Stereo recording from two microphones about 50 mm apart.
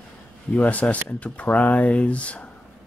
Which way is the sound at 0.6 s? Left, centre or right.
Left.